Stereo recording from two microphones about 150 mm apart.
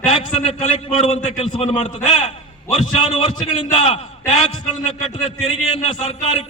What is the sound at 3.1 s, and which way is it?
Speech, 35° left (ahead or behind).